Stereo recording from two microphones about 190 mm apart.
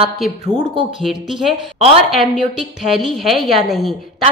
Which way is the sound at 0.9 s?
Centre (ahead or behind).